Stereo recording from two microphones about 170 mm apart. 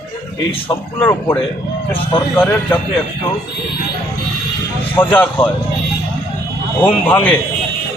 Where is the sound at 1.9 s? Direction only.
30° left (ahead or behind).